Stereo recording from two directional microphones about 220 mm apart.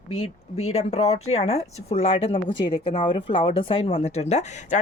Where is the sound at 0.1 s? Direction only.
30° left (ahead or behind).